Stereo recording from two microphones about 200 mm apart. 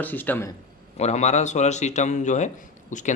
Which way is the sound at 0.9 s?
35° left (ahead or behind).